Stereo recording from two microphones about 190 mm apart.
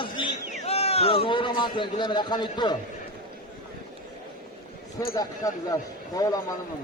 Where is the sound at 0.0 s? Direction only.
25° left (ahead or behind).